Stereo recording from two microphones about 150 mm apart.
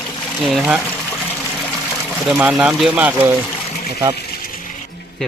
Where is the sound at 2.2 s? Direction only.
5° right (ahead or behind).